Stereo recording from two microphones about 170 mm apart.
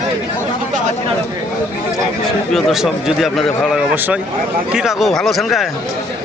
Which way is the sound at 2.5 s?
Centre (ahead or behind).